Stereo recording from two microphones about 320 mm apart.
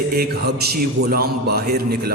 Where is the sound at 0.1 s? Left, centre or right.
Right.